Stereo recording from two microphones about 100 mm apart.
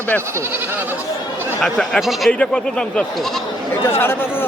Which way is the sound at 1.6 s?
Centre (ahead or behind).